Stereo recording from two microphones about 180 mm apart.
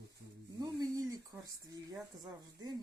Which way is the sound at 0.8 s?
20° right (ahead or behind).